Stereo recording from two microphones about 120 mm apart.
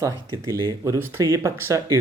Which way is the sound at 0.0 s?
25° right (ahead or behind).